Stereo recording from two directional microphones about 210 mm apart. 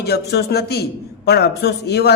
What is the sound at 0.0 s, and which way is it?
A man's voice, 50° left (ahead or behind).